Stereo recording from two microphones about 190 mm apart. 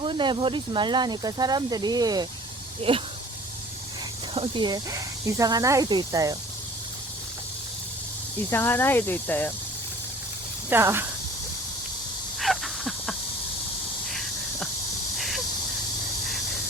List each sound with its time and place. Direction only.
0.0 s speech: 25° right (ahead or behind)
4.4 s speech: 25° right (ahead or behind)
8.4 s speech: 10° left (ahead or behind)
10.7 s speech: 10° right (ahead or behind)
12.4 s a sound: centre (ahead or behind)
14.1 s snake: centre (ahead or behind)